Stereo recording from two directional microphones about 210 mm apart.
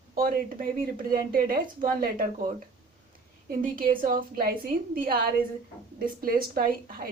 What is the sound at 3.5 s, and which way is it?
Speech, 45° right (ahead or behind).